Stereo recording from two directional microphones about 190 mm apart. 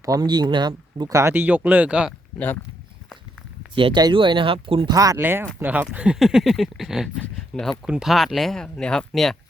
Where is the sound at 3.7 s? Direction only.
25° right (ahead or behind).